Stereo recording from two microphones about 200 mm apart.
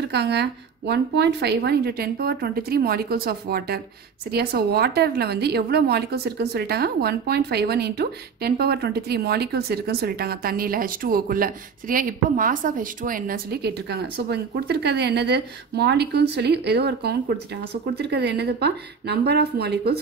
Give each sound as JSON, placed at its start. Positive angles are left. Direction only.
{"t": 0.1, "sound": "a woman's voice", "side_deg": -55}